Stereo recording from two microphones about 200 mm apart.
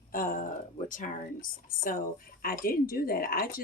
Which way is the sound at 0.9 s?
40° left (ahead or behind).